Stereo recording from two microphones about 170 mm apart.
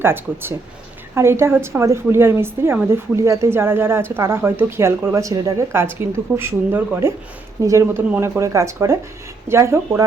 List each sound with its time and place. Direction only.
0.0 s a woman's voice: 15° right (ahead or behind)